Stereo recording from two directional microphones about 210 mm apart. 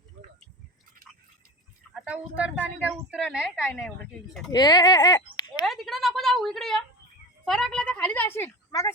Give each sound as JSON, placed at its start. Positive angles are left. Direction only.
{"t": 1.9, "sound": "a woman's voice", "side_deg": -5}
{"t": 4.5, "sound": "speech", "side_deg": 20}
{"t": 5.6, "sound": "a woman's voice", "side_deg": 0}